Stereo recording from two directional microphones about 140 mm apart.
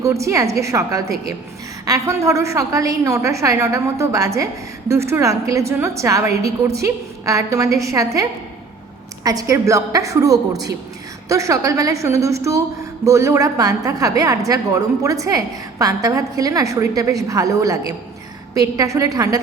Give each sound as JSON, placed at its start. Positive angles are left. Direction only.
{"t": 0.0, "sound": "a woman's voice", "side_deg": -20}